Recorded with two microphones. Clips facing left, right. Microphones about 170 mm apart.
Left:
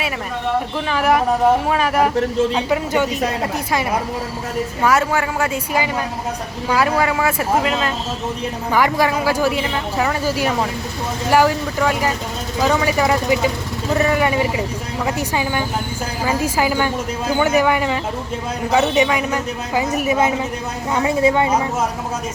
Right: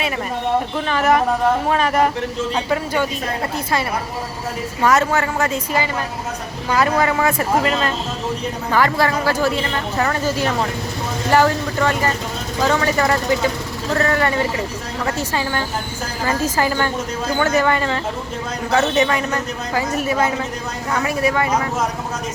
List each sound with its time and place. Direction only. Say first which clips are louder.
0.9 s a man's voice: even; 5° left (ahead or behind)
4.8 s a man's voice: right 1 dB; 10° left (ahead or behind)